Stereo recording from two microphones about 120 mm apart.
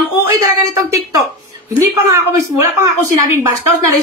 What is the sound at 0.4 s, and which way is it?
A woman's voice, 25° right (ahead or behind).